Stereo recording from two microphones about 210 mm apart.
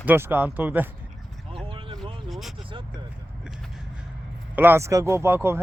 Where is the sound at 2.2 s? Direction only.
Centre (ahead or behind).